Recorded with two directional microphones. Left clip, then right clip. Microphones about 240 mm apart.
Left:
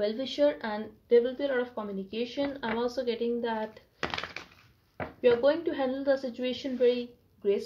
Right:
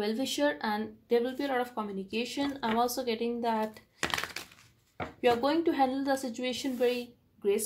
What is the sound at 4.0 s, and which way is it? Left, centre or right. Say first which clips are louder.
Thunk: right 1 dB; right.